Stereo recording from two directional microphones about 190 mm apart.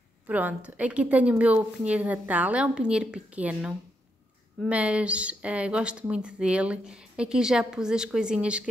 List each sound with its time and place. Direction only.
0.3 s a woman's voice: 10° right (ahead or behind)